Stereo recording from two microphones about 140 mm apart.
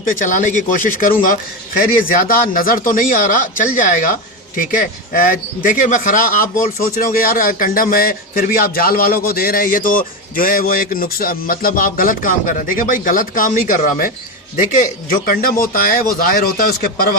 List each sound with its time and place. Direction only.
0.0 s speech: 75° left (ahead or behind)
1.8 s speech: 85° left